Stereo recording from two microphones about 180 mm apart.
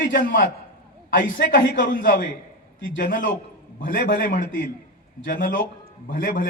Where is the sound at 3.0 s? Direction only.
50° left (ahead or behind).